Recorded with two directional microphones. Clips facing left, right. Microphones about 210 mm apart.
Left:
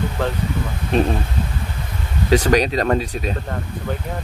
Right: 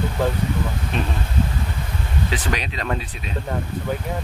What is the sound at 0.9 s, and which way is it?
Speech, 35° left (ahead or behind).